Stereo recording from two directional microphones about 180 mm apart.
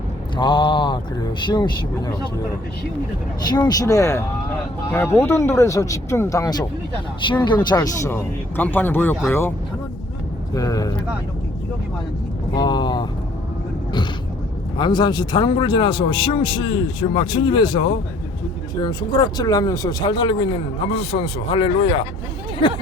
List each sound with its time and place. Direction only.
0.3 s speech: 25° left (ahead or behind)
3.5 s speech: 20° left (ahead or behind)
7.8 s speech: 10° left (ahead or behind)
10.5 s speech: 20° left (ahead or behind)
12.5 s speech: 25° left (ahead or behind)
14.8 s speech: 25° left (ahead or behind)